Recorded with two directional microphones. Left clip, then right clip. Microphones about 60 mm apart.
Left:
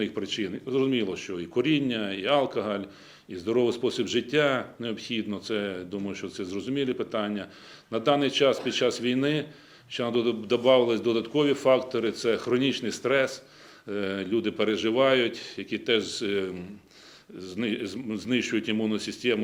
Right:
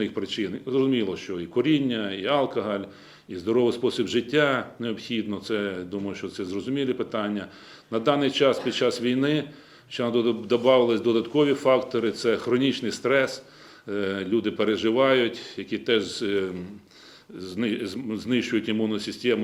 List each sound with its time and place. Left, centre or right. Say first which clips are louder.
0.0 s speech: right 2 dB; left
3.3 s speech: right 2 dB; left
17.3 s speech: right 2 dB; left